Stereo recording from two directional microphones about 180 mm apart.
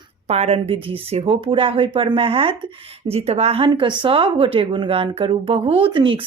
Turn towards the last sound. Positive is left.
turn(degrees=-30)  # may be behind; listen again after turning